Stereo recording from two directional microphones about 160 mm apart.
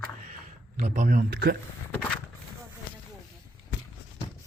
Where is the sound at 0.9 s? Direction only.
50° right (ahead or behind).